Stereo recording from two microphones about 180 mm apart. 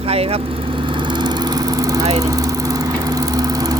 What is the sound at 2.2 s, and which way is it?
Lawn mower, 20° right (ahead or behind).